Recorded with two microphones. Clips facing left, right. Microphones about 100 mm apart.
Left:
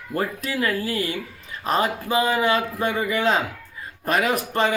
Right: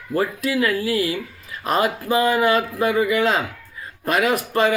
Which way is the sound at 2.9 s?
30° left (ahead or behind).